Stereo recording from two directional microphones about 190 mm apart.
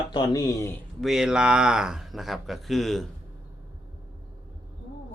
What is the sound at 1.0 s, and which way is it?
Speech, centre (ahead or behind).